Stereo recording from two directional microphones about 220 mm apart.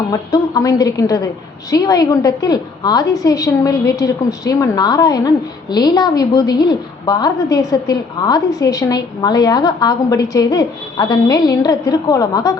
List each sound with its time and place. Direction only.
0.1 s a woman's voice: 15° left (ahead or behind)